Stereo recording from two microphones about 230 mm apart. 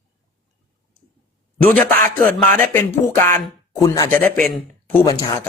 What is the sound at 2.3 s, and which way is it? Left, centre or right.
Speech, centre.